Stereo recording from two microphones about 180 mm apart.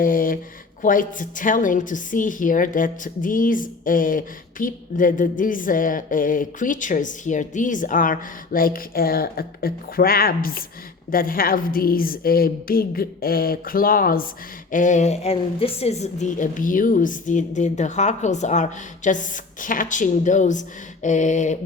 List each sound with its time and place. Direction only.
0.0 s a woman's voice: 50° left (ahead or behind)